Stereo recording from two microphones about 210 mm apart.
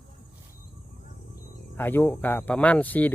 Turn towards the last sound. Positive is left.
turn(degrees=10)  # may be behind; listen again after turning